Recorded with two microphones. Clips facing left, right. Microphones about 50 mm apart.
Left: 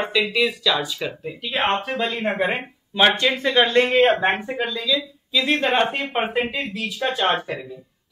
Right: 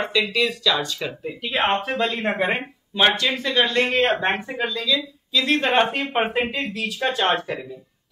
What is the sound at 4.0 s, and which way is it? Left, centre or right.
Speech, centre.